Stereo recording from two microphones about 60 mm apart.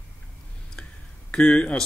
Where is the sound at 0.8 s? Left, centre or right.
Centre.